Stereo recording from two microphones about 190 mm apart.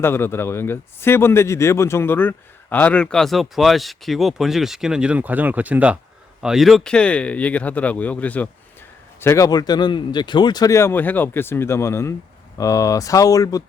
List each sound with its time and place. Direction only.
0.0 s a man's voice: 10° left (ahead or behind)